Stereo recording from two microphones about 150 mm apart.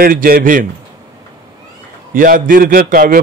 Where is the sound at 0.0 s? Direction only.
75° right (ahead or behind).